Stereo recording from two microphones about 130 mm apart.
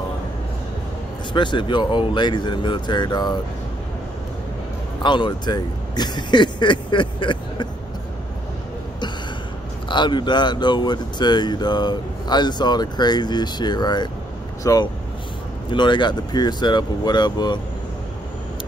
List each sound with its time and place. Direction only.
1.3 s speech: 35° left (ahead or behind)
5.0 s speech: 40° left (ahead or behind)
9.8 s speech: 35° left (ahead or behind)
15.7 s speech: 35° left (ahead or behind)